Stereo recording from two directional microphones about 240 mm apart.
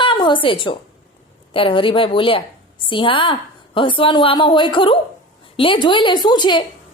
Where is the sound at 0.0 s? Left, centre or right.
Centre.